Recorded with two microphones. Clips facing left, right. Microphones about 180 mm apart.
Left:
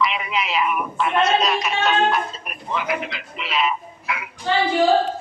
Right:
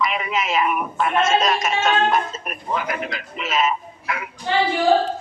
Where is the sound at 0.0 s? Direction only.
45° right (ahead or behind).